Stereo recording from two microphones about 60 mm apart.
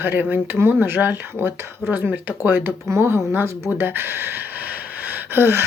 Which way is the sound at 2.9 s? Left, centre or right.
Right.